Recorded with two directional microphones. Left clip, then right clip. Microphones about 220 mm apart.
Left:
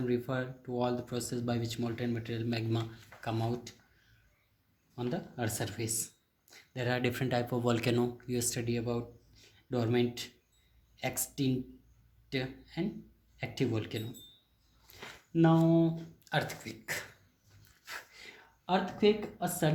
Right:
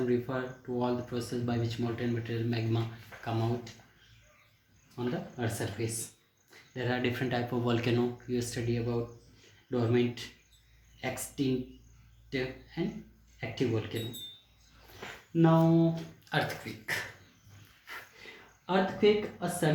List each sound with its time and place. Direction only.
0.1 s speech: 50° left (ahead or behind)
4.9 s speech: 50° left (ahead or behind)
15.3 s speech: 50° left (ahead or behind)
16.2 s speech: 40° left (ahead or behind)
17.8 s a sound: 50° left (ahead or behind)